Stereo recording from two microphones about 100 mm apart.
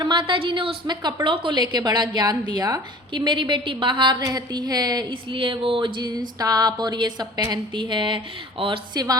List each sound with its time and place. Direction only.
0.0 s a woman's voice: 50° right (ahead or behind)
4.2 s a woman's voice: 40° right (ahead or behind); by 8.8 s 60° right (ahead or behind)